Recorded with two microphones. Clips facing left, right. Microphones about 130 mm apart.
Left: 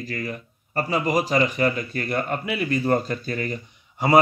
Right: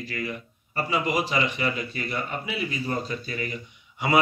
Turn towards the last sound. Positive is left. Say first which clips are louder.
# left 4 dB
turn(degrees=40)  # may be behind; listen again after turning